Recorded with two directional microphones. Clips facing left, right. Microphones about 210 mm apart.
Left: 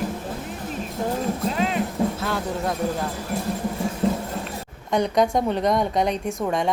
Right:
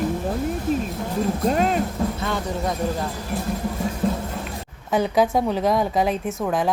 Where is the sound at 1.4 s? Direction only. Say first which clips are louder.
Right 6 dB; 45° right (ahead or behind).